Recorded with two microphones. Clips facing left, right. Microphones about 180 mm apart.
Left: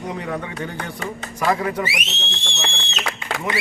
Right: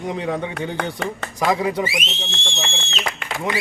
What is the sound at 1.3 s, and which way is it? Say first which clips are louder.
Speech: right 1 dB; 10° right (ahead or behind).